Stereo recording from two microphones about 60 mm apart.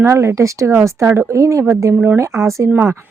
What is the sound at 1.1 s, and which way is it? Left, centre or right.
Speech, right.